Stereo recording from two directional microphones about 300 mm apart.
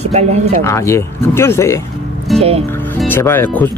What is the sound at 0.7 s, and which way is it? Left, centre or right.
Speech, centre.